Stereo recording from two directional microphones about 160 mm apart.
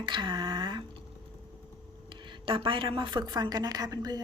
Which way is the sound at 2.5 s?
35° right (ahead or behind).